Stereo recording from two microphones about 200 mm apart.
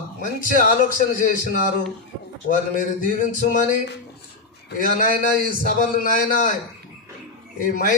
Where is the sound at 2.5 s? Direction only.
40° left (ahead or behind).